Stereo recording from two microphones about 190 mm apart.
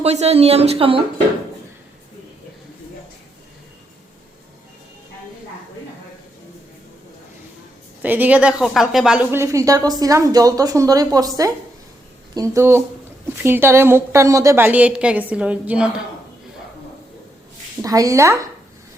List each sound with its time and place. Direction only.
0.0 s speech: 35° right (ahead or behind)
8.0 s a woman's voice: 10° right (ahead or behind)
17.8 s a woman's voice: 20° right (ahead or behind)